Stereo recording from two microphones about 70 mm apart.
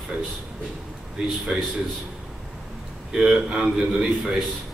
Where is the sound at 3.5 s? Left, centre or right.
Centre.